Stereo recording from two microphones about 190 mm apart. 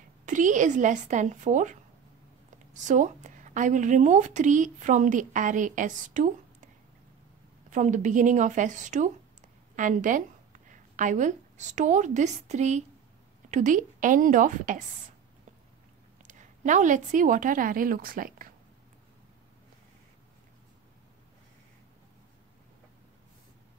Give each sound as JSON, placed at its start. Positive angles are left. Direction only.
{"t": 0.2, "sound": "a woman's voice", "side_deg": -40}
{"t": 7.7, "sound": "a woman's voice", "side_deg": -40}
{"t": 16.2, "sound": "a woman's voice", "side_deg": -40}